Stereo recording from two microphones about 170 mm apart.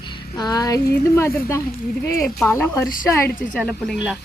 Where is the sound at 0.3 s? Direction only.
25° left (ahead or behind).